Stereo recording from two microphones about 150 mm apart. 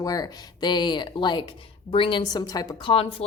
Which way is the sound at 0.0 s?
25° left (ahead or behind).